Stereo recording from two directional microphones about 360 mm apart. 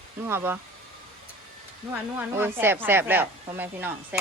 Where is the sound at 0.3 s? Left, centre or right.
Centre.